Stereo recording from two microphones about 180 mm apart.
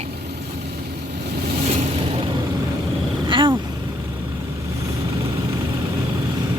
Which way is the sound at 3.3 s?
25° right (ahead or behind).